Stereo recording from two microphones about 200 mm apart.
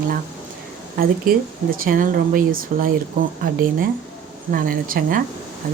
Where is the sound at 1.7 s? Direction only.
45° right (ahead or behind).